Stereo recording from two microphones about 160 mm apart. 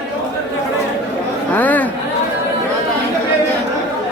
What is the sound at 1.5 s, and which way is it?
Speech, 10° left (ahead or behind).